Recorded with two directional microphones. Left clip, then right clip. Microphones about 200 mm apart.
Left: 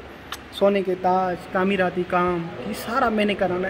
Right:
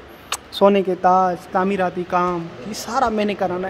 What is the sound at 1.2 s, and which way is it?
A woman's voice, 10° right (ahead or behind).